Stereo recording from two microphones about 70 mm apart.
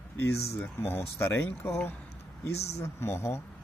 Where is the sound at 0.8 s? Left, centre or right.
Left.